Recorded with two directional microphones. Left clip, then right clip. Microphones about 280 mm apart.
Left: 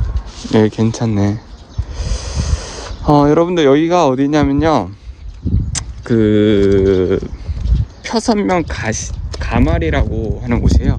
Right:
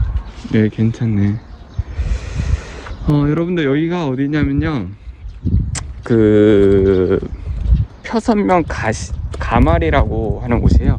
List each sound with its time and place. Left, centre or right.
0.4 s speech: centre
5.7 s speech: centre